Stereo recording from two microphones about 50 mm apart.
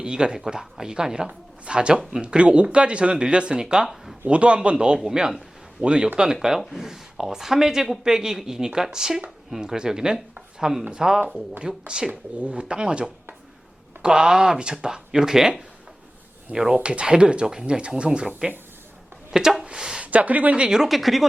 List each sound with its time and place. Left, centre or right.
0.0 s speech: centre
3.8 s speech: centre
4.3 s speech: right
6.6 s speech: centre
16.7 s speech: right
19.3 s speech: centre
20.0 s speech: right
20.6 s speech: centre